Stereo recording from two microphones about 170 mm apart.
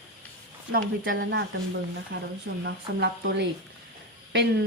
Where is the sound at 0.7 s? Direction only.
60° right (ahead or behind).